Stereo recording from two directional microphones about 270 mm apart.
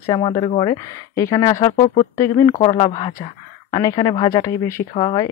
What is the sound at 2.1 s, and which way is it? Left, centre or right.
Speech, centre.